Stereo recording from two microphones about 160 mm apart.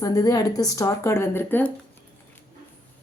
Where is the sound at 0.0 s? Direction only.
20° left (ahead or behind).